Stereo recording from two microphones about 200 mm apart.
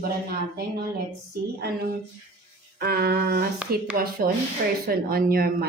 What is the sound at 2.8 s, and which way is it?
Speech, 50° right (ahead or behind).